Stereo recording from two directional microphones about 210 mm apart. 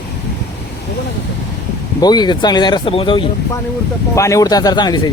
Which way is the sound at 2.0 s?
20° left (ahead or behind).